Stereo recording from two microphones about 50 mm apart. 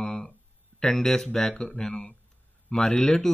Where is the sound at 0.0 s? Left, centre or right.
Centre.